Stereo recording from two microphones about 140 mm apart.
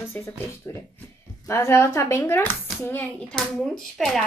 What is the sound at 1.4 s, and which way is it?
A child's voice, 20° left (ahead or behind).